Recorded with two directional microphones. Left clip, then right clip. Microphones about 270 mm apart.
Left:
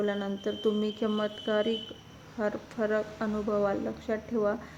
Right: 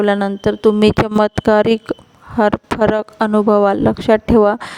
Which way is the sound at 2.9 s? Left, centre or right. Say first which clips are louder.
Right 15 dB; right.